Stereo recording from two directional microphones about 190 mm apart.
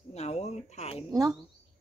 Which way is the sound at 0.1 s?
35° left (ahead or behind).